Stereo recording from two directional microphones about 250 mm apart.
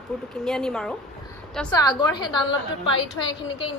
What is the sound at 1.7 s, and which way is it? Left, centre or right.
Speech, centre.